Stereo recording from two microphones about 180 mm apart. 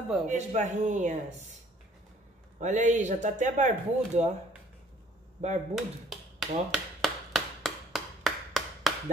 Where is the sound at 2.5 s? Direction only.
45° right (ahead or behind).